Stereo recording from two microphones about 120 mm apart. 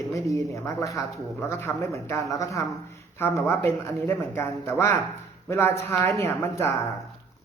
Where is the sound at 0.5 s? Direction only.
25° left (ahead or behind).